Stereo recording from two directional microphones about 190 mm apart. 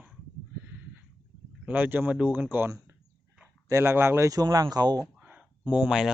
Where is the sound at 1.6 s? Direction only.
10° right (ahead or behind).